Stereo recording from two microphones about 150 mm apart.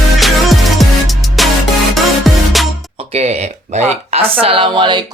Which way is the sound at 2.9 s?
45° right (ahead or behind).